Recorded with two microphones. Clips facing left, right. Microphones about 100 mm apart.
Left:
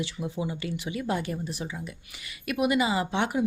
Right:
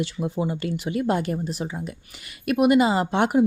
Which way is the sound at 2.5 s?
55° right (ahead or behind).